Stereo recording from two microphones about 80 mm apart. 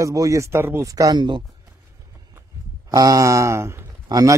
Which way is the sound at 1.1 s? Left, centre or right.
Right.